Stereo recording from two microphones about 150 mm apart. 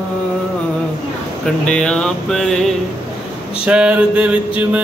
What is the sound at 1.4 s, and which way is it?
Speech, 5° left (ahead or behind).